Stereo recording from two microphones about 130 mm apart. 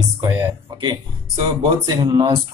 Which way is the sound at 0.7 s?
35° right (ahead or behind).